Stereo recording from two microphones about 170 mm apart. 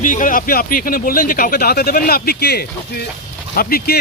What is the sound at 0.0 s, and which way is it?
Speech, 50° left (ahead or behind).